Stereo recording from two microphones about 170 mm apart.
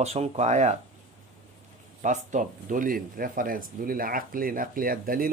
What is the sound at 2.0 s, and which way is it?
Speech, 45° right (ahead or behind).